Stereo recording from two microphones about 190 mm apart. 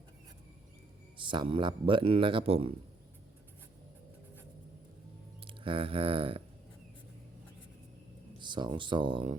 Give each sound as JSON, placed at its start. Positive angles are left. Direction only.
{"t": 1.1, "sound": "speech", "side_deg": -25}
{"t": 5.5, "sound": "a sound", "side_deg": -25}
{"t": 8.4, "sound": "speech", "side_deg": -25}